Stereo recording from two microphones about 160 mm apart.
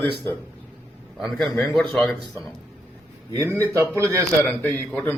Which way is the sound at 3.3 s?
20° right (ahead or behind).